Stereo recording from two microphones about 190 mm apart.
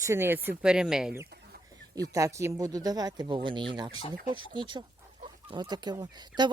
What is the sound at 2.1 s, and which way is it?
Speech, 15° right (ahead or behind).